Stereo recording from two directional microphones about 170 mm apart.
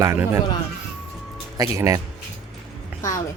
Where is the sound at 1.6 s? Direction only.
20° right (ahead or behind).